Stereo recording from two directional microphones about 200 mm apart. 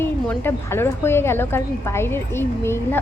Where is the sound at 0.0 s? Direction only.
10° left (ahead or behind).